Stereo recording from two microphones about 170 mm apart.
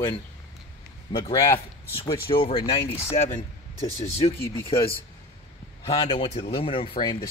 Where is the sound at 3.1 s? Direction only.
40° left (ahead or behind).